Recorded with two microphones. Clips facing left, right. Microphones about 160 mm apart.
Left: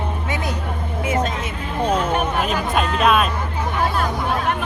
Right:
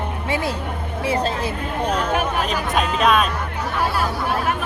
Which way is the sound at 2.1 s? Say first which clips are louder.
Left 1 dB; centre (ahead or behind).